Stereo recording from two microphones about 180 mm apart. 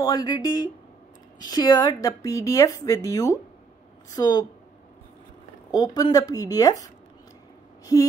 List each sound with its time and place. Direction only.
0.0 s speech: 20° left (ahead or behind)
5.7 s speech: 20° left (ahead or behind)
7.8 s a sound: 20° left (ahead or behind)